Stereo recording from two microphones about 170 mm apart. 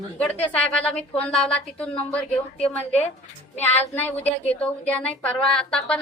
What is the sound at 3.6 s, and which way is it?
A woman's voice, 10° left (ahead or behind).